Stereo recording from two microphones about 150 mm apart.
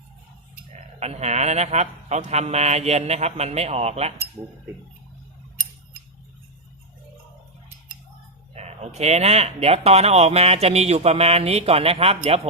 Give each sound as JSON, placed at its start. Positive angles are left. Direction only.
{"t": 0.9, "sound": "speech", "side_deg": -45}
{"t": 8.5, "sound": "speech", "side_deg": -45}